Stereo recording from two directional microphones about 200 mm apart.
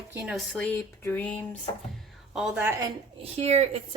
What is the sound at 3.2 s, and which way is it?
Speech, 30° right (ahead or behind).